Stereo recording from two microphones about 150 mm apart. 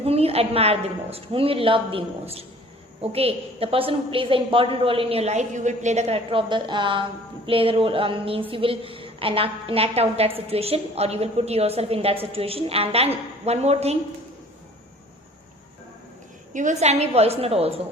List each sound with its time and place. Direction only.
0.0 s a woman's voice: 40° right (ahead or behind)
16.5 s a woman's voice: 55° right (ahead or behind)